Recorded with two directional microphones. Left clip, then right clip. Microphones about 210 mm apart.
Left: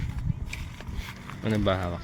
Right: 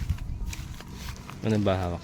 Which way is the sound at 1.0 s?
15° right (ahead or behind).